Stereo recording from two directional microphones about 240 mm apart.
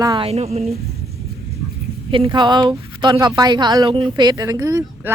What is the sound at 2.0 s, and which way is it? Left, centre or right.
Speech, right.